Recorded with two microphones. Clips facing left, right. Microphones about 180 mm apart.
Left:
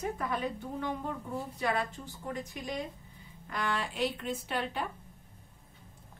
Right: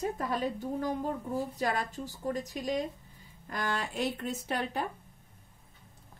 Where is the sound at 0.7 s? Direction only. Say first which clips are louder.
Right 3 dB; 40° right (ahead or behind).